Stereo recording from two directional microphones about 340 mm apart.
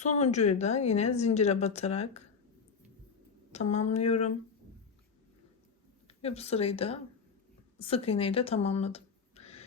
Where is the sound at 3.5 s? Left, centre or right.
Centre.